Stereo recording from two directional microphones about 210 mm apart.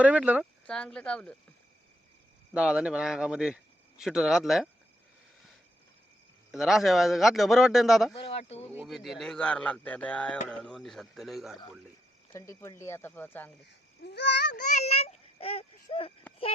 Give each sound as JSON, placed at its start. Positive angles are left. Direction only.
{"t": 0.0, "sound": "speech", "side_deg": -5}
{"t": 2.5, "sound": "speech", "side_deg": -5}
{"t": 6.5, "sound": "speech", "side_deg": 0}
{"t": 8.1, "sound": "speech", "side_deg": 25}
{"t": 8.7, "sound": "speech", "side_deg": -5}
{"t": 12.3, "sound": "speech", "side_deg": 15}
{"t": 14.0, "sound": "babbling", "side_deg": 50}
{"t": 14.5, "sound": "fowl", "side_deg": 35}